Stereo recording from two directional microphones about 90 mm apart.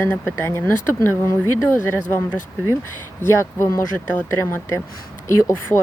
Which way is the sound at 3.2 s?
30° left (ahead or behind).